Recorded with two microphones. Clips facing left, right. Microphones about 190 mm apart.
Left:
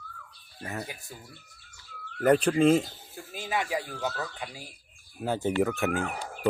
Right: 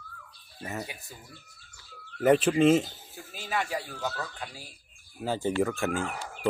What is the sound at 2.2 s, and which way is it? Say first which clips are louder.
Speech: even; 5° right (ahead or behind).